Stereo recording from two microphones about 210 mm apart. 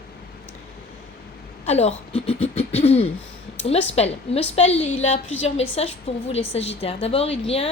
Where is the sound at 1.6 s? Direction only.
30° left (ahead or behind).